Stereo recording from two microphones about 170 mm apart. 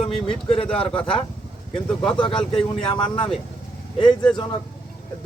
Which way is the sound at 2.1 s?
30° left (ahead or behind).